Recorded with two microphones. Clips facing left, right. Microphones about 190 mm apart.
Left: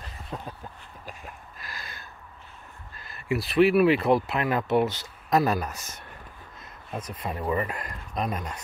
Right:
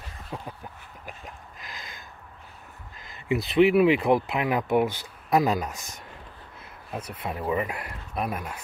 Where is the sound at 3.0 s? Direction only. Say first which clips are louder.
Right 1 dB; 20° right (ahead or behind).